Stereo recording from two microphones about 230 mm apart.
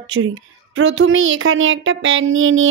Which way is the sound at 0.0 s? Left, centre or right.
Right.